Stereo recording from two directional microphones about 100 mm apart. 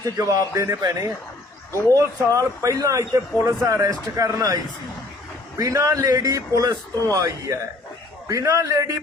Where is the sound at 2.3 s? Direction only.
30° right (ahead or behind).